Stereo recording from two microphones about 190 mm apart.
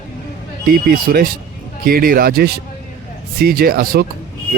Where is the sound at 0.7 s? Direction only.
50° right (ahead or behind).